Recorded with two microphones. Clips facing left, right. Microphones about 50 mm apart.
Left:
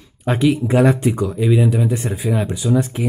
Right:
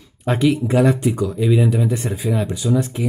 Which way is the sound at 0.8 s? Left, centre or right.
Left.